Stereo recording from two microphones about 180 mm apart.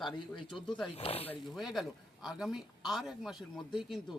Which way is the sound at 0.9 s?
35° left (ahead or behind).